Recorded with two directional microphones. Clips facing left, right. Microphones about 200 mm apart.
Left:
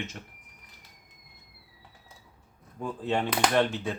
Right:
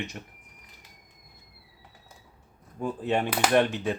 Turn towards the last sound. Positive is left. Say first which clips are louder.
# right 3 dB
turn(degrees=-15)  # may be behind; listen again after turning